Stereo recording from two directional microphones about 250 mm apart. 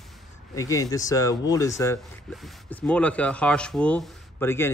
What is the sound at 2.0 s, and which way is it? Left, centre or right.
Speech, centre.